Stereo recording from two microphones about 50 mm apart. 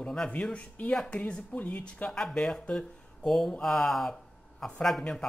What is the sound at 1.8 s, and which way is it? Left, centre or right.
Speech, centre.